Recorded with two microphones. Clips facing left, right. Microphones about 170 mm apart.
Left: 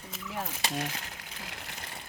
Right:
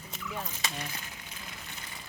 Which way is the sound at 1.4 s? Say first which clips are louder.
Left 4 dB; 70° left (ahead or behind).